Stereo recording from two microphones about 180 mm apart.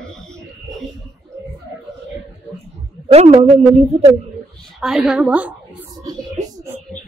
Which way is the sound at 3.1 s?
35° right (ahead or behind).